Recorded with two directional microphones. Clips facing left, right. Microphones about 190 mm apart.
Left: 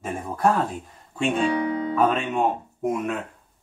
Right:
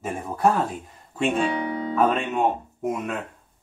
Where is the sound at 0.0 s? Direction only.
Centre (ahead or behind).